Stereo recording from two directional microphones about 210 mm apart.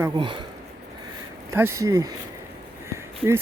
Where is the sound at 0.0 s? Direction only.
20° right (ahead or behind).